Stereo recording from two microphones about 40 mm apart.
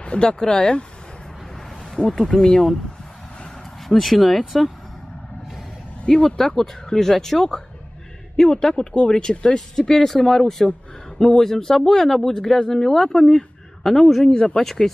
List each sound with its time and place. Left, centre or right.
0.0 s speech: left
1.9 s speech: centre
4.0 s speech: centre
6.0 s speech: centre
14.3 s speech: left
14.6 s speech: centre